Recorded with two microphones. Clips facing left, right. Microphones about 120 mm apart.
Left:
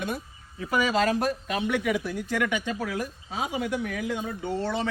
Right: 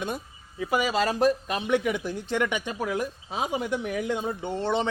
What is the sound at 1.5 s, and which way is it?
Speech, 25° right (ahead or behind).